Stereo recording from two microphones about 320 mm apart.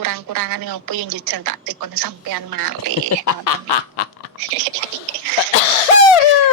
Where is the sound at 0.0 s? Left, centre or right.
Right.